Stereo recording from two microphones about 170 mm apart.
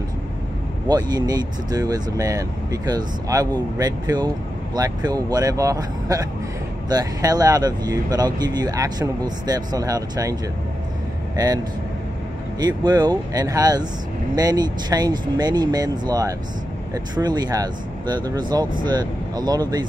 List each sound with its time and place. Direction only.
0.8 s speech: 25° right (ahead or behind)
11.3 s speech: 20° right (ahead or behind)